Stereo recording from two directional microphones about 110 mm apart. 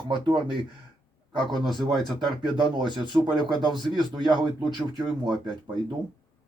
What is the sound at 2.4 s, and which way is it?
Speech, 45° right (ahead or behind).